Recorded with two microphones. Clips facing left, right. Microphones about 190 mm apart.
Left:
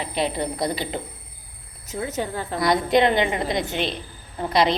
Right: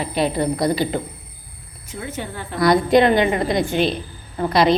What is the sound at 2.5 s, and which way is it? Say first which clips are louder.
A woman's voice: right 5 dB; 20° left (ahead or behind).